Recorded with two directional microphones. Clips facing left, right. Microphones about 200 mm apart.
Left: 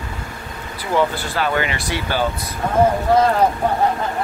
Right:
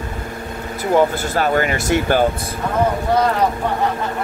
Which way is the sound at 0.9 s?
45° right (ahead or behind).